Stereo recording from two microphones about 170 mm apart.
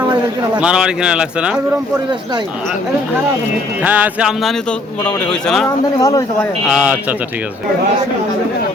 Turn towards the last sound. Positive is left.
turn(degrees=-5)  # may be behind; listen again after turning